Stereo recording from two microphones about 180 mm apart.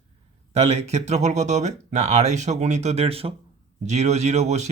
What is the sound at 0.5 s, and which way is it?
Speech, 35° right (ahead or behind).